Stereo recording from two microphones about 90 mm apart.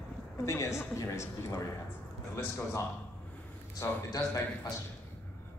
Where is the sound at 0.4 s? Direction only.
30° left (ahead or behind).